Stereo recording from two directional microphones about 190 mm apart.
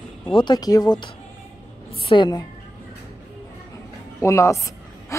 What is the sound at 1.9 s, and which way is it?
Speech, 25° left (ahead or behind).